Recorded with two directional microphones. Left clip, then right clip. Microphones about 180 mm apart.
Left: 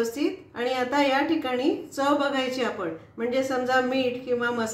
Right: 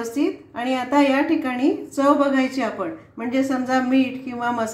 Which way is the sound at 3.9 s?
30° right (ahead or behind).